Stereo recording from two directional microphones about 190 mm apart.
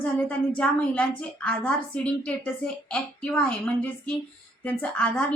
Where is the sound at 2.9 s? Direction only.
5° left (ahead or behind).